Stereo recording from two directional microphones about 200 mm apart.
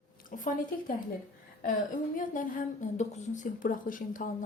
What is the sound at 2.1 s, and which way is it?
A woman's voice, 40° left (ahead or behind).